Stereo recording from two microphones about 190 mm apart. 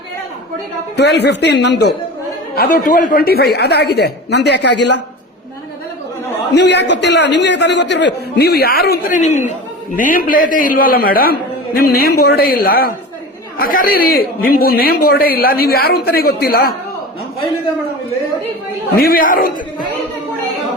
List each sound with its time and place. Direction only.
0.9 s a woman's voice: 60° left (ahead or behind)
2.6 s a woman's voice: 50° left (ahead or behind); by 4.9 s 65° left (ahead or behind)
6.5 s a man's voice: 65° left (ahead or behind)
18.9 s a man's voice: 50° left (ahead or behind)